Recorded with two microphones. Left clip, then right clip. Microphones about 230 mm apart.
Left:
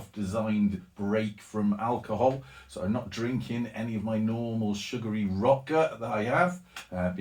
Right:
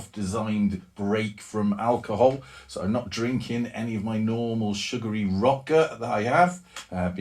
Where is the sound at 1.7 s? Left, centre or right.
Right.